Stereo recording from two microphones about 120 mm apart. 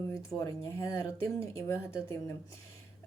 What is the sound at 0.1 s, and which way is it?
Speech, 25° left (ahead or behind).